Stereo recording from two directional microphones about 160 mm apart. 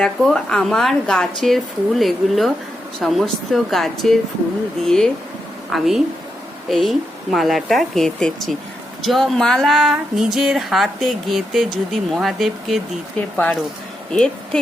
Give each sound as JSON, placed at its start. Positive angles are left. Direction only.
{"t": 0.0, "sound": "a woman's voice", "side_deg": 0}